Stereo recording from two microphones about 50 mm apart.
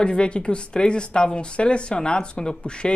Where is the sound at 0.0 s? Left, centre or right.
Centre.